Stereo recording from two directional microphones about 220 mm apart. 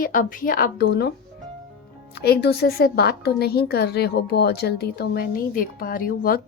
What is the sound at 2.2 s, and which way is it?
A woman's voice, 45° left (ahead or behind).